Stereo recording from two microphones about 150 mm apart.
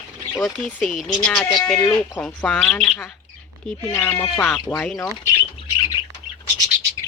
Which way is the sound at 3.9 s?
15° left (ahead or behind).